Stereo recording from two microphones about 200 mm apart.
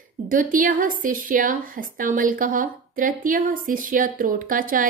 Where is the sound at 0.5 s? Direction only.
45° right (ahead or behind).